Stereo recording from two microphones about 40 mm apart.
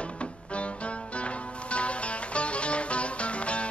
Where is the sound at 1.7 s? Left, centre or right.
Left.